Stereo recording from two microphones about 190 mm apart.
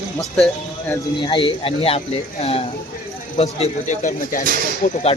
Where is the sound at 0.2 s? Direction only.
Centre (ahead or behind).